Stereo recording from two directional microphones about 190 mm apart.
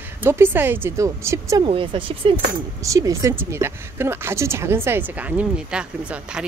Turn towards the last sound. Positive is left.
turn(degrees=-5)  # may be behind; listen again after turning